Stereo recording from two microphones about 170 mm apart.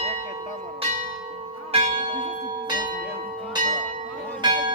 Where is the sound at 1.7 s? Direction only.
35° right (ahead or behind).